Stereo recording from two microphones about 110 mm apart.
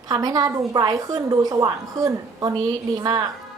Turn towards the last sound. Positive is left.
turn(degrees=-40)  # may be behind; listen again after turning